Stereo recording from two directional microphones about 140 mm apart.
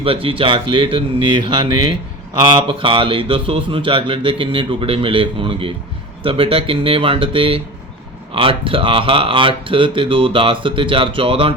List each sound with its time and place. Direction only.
0.0 s speech: 40° right (ahead or behind)